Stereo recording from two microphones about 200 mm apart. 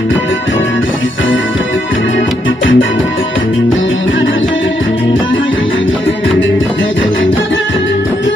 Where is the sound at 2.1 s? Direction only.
70° left (ahead or behind).